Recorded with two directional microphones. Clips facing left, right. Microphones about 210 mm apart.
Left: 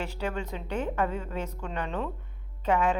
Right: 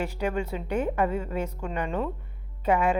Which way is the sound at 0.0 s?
15° right (ahead or behind).